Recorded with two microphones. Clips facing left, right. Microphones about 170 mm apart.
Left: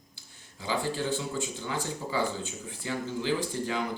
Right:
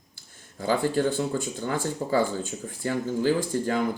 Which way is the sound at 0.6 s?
50° right (ahead or behind).